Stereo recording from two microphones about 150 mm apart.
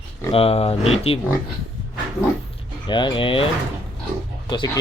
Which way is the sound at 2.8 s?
30° left (ahead or behind).